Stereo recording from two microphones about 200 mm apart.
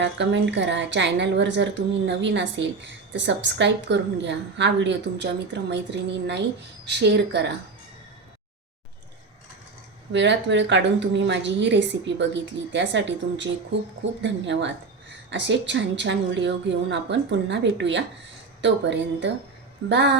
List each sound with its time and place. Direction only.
0.0 s a woman's voice: 65° right (ahead or behind)
10.1 s a woman's voice: 65° right (ahead or behind)